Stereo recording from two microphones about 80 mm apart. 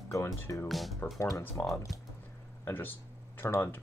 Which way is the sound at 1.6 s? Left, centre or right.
Left.